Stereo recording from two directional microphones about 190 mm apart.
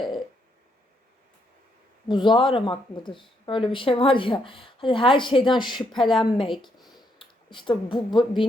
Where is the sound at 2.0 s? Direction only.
25° left (ahead or behind).